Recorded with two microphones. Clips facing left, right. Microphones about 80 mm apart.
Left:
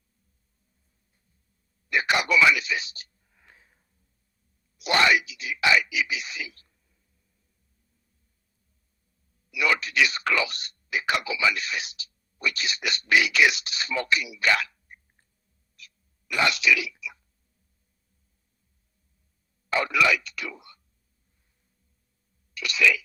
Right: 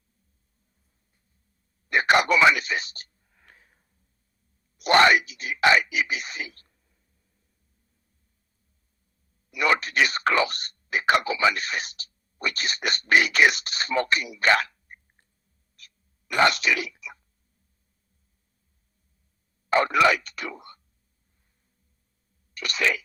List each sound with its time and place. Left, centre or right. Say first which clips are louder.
1.9 s a sound: right 4 dB; right
2.4 s speech: right 2 dB; right
3.4 s sniff: right 1 dB; centre
4.8 s a sound: right 4 dB; right
9.5 s speech: right 2 dB; right
15.7 s throat clearing: left 3 dB; right
19.7 s speech: right 4 dB; right
22.5 s speech: left 2 dB; right